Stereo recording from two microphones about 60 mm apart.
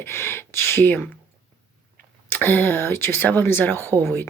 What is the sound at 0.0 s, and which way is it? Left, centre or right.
Speech, left.